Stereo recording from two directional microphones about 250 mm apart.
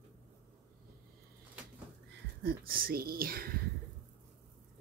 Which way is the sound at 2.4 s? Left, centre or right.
Right.